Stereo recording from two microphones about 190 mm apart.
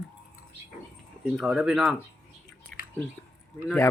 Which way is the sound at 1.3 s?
5° right (ahead or behind).